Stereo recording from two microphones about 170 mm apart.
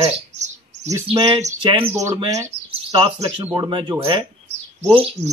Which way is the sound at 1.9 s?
15° right (ahead or behind).